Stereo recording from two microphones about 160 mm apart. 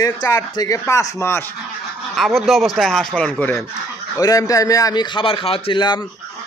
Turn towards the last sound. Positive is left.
turn(degrees=30)  # may be behind; listen again after turning